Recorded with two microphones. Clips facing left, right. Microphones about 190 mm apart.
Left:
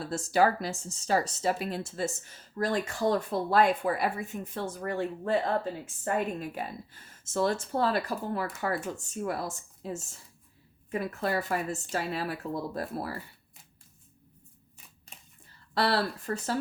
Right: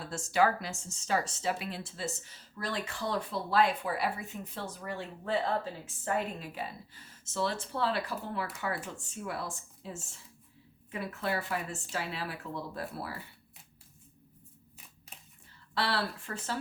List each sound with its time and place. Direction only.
0.0 s speech: 35° left (ahead or behind)
6.4 s speech: 50° left (ahead or behind)
15.7 s speech: 40° left (ahead or behind)